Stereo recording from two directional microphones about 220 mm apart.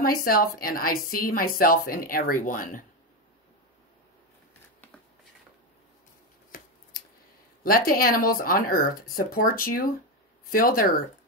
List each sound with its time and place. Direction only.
0.0 s a woman's voice: 40° left (ahead or behind)
7.6 s a woman's voice: 40° left (ahead or behind)